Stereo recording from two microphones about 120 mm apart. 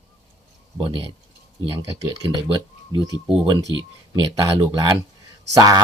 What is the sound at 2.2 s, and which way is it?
Speech, 40° right (ahead or behind).